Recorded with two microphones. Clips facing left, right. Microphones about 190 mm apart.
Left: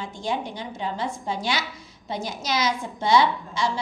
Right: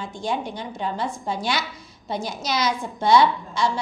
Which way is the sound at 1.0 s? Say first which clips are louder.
Right 1 dB; 20° left (ahead or behind).